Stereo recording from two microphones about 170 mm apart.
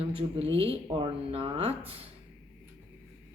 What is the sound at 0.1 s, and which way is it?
Speech, 30° right (ahead or behind).